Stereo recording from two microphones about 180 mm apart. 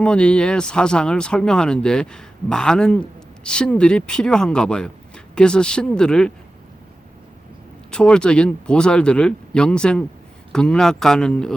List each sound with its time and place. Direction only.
0.0 s speech: 5° left (ahead or behind)
7.9 s speech: 5° left (ahead or behind)